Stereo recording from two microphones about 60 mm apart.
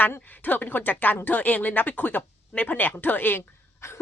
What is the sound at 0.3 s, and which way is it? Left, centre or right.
Speech, left.